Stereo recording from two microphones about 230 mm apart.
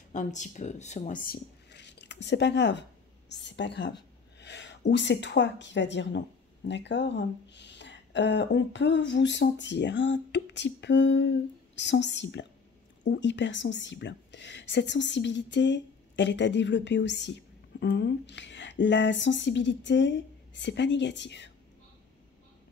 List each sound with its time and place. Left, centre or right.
0.1 s a woman's voice: left